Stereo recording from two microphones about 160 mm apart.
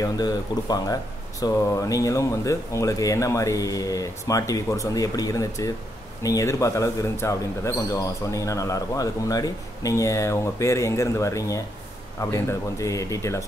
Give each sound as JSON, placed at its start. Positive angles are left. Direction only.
{"t": 0.0, "sound": "speech", "side_deg": 25}